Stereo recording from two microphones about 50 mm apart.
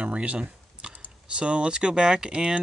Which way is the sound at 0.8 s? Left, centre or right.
Centre.